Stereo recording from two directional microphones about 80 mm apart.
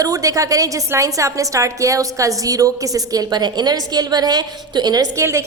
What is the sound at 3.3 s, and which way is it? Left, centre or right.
A woman's voice, right.